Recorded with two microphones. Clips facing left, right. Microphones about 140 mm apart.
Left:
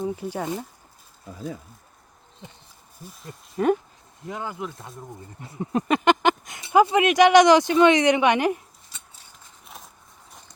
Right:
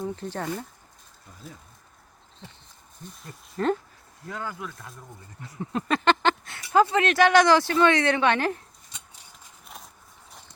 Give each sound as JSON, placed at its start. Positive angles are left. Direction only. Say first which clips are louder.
{"t": 0.0, "sound": "speech", "louder": "left 3 dB", "side_deg": 10}
{"t": 3.0, "sound": "speech", "louder": "left 2 dB", "side_deg": 0}
{"t": 4.2, "sound": "speech", "louder": "left 3 dB", "side_deg": 20}
{"t": 9.6, "sound": "a sound", "louder": "left 1 dB", "side_deg": 0}